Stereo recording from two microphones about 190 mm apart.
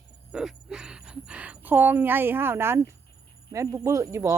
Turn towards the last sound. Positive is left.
turn(degrees=-15)  # may be behind; listen again after turning